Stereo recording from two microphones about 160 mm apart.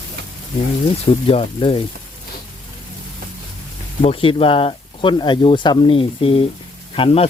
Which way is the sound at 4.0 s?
35° left (ahead or behind).